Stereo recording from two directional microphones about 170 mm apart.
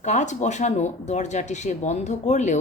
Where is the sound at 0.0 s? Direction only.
45° left (ahead or behind).